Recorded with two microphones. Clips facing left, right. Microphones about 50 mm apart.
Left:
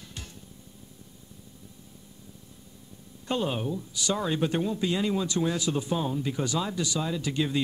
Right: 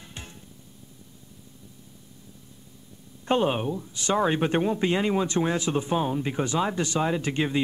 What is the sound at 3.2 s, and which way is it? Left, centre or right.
Speech, right.